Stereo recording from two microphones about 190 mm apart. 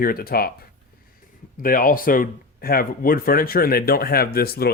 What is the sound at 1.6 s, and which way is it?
Speech, 50° left (ahead or behind).